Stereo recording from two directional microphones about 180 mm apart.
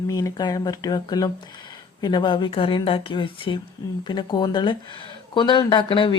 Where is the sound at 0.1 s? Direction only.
20° left (ahead or behind).